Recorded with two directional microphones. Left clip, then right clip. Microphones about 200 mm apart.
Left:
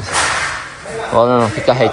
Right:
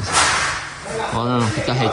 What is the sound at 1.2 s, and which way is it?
Speech, 15° right (ahead or behind).